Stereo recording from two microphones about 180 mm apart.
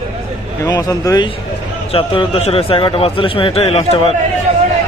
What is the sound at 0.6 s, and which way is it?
Speech, 20° left (ahead or behind).